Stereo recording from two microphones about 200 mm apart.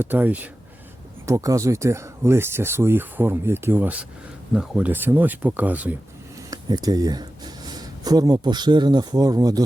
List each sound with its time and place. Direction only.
0.0 s speech: 10° right (ahead or behind)
6.8 s speech: 20° right (ahead or behind)